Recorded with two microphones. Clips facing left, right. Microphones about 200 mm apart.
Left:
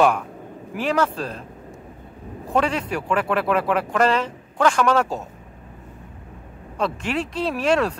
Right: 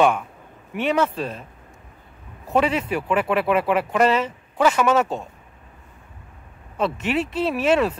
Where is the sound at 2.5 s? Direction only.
5° right (ahead or behind).